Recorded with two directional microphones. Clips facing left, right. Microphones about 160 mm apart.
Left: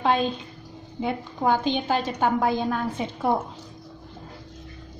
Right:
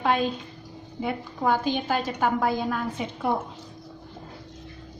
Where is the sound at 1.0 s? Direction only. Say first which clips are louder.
Left 2 dB; 25° left (ahead or behind).